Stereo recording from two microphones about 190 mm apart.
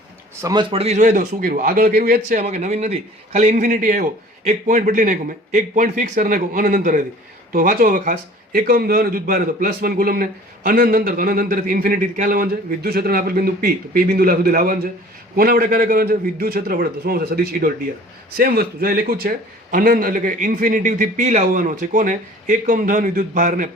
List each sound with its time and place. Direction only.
0.4 s a man's voice: 25° right (ahead or behind); by 23.6 s 40° right (ahead or behind)